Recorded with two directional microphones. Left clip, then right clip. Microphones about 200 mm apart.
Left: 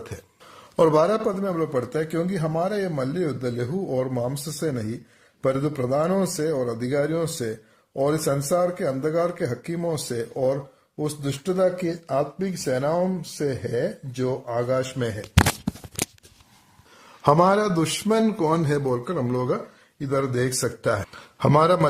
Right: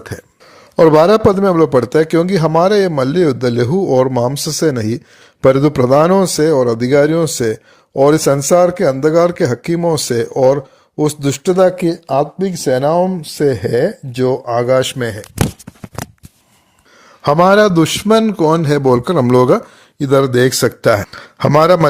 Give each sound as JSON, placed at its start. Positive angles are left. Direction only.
{"t": 0.8, "sound": "speech", "side_deg": -35}
{"t": 17.2, "sound": "a man's voice", "side_deg": -35}